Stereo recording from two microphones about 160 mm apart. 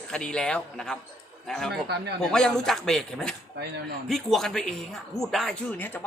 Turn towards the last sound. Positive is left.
turn(degrees=10)  # may be behind; listen again after turning